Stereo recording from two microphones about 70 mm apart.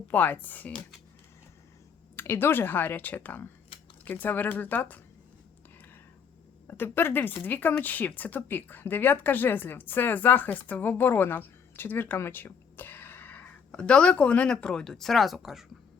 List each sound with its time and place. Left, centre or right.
0.1 s speech: left
2.1 s a woman's voice: left
6.7 s speech: left; by 15.6 s centre